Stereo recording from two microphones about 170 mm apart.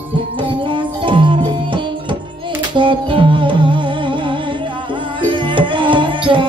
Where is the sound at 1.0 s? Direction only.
30° right (ahead or behind).